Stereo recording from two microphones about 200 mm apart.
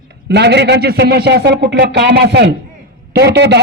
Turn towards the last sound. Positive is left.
turn(degrees=-60)  # may be behind; listen again after turning